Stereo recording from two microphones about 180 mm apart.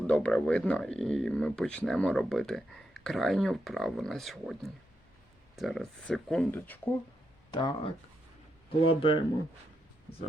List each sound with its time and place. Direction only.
0.1 s speech: 5° left (ahead or behind)
7.5 s speech: 25° left (ahead or behind)